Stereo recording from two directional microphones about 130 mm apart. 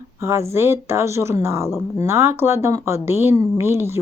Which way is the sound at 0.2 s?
20° right (ahead or behind).